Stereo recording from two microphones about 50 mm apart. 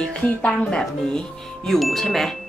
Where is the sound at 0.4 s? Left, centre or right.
Centre.